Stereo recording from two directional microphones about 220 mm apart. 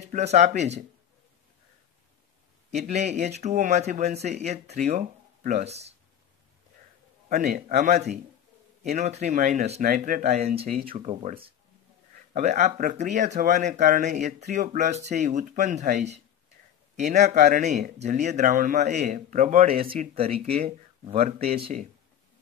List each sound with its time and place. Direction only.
0.1 s speech: 30° right (ahead or behind)
2.9 s speech: 30° right (ahead or behind)
7.2 s speech: 35° right (ahead or behind)